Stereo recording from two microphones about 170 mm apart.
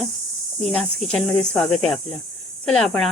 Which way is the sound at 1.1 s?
5° left (ahead or behind).